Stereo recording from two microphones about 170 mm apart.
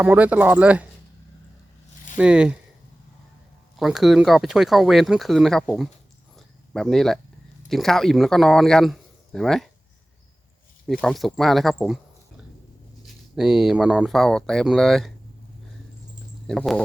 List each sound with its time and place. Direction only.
0.0 s speech: 10° right (ahead or behind)
2.1 s speech: 5° right (ahead or behind)
3.8 s speech: centre (ahead or behind)
6.3 s a sound: centre (ahead or behind)
7.7 s speech: centre (ahead or behind)
11.0 s speech: centre (ahead or behind)
13.0 s speech: 5° right (ahead or behind)
16.5 s speech: 5° left (ahead or behind)